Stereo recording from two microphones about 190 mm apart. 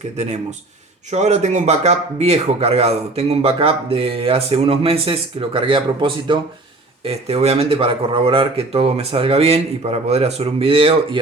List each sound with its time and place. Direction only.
1.1 s speech: 35° right (ahead or behind)